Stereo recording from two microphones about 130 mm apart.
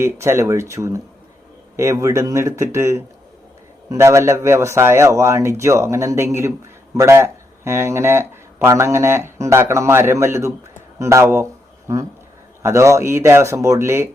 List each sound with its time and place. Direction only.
0.0 s speech: 20° right (ahead or behind)